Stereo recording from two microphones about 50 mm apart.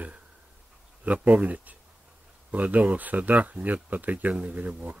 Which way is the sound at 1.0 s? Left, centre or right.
Right.